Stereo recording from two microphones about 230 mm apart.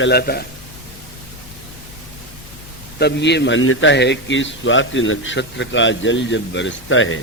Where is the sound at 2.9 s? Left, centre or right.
Left.